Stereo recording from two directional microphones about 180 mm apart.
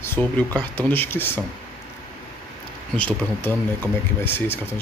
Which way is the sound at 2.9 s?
10° left (ahead or behind).